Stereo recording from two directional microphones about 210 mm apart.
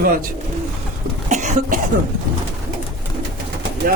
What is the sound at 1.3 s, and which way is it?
Cough, 35° right (ahead or behind).